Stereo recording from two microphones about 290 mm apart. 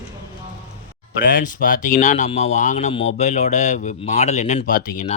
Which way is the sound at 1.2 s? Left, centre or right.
Left.